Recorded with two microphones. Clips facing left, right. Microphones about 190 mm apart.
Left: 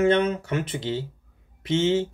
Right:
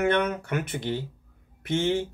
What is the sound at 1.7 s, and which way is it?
Speech, 15° right (ahead or behind).